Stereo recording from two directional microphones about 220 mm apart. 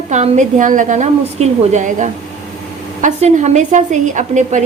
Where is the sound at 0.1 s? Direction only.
35° right (ahead or behind).